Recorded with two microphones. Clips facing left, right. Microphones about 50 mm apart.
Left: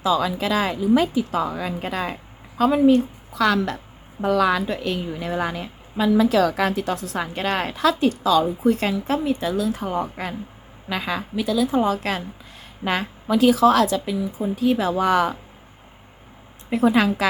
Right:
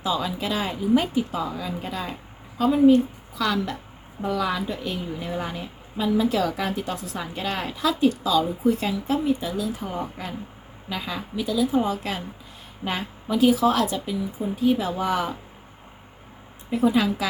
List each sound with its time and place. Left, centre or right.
0.0 s speech: left
1.3 s a woman's voice: left
2.6 s a woman's voice: left
16.6 s a woman's voice: left